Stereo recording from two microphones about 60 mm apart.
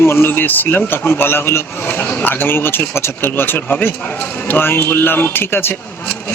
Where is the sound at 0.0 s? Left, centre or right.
Left.